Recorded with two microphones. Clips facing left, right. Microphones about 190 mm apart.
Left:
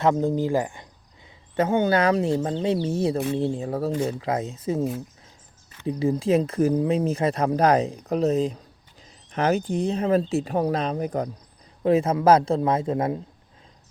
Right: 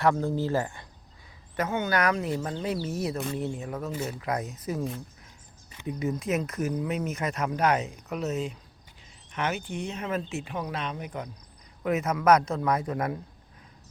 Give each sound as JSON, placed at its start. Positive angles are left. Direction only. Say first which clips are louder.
{"t": 0.0, "sound": "speech", "louder": "left 4 dB", "side_deg": 20}
{"t": 1.5, "sound": "speech", "louder": "left 7 dB", "side_deg": 30}
{"t": 5.8, "sound": "speech", "louder": "left 7 dB", "side_deg": 30}